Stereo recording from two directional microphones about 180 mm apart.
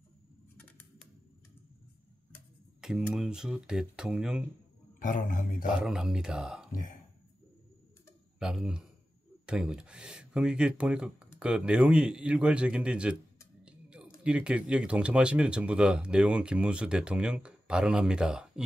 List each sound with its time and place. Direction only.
0.6 s a sound: 10° left (ahead or behind)
2.8 s speech: 5° right (ahead or behind)
5.0 s a man's voice: 45° left (ahead or behind)
5.7 s speech: 5° right (ahead or behind)
6.7 s speech: 50° left (ahead or behind)
8.4 s speech: 5° right (ahead or behind)
13.7 s a sound: 5° right (ahead or behind)
14.2 s speech: 5° right (ahead or behind)